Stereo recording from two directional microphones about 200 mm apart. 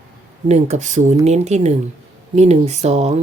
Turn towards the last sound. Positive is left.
turn(degrees=-35)  # may be behind; listen again after turning